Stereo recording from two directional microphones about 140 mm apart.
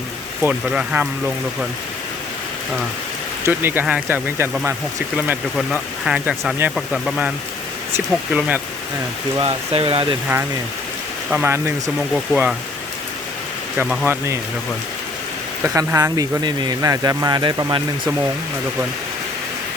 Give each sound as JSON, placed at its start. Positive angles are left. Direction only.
{"t": 0.4, "sound": "speech", "side_deg": -10}
{"t": 3.4, "sound": "speech", "side_deg": -15}
{"t": 6.1, "sound": "speech", "side_deg": -5}
{"t": 9.4, "sound": "speech", "side_deg": -45}
{"t": 11.3, "sound": "speech", "side_deg": -10}
{"t": 14.0, "sound": "speech", "side_deg": -15}
{"t": 15.6, "sound": "speech", "side_deg": -20}